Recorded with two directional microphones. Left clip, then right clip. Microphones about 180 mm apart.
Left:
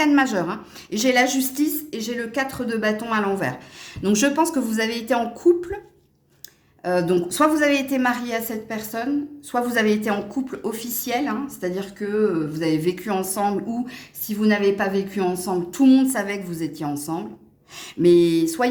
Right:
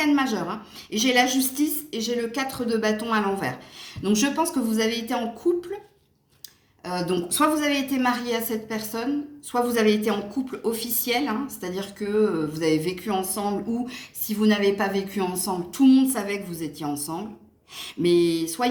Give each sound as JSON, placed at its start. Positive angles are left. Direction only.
{"t": 0.0, "sound": "a woman's voice", "side_deg": 55}
{"t": 7.1, "sound": "a woman's voice", "side_deg": 45}